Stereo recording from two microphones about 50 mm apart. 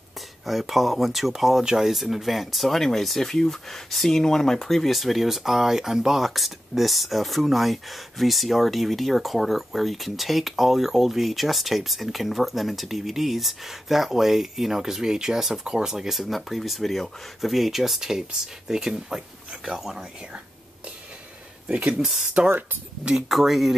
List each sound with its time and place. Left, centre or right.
0.5 s speech: centre
21.6 s speech: right
23.0 s speech: centre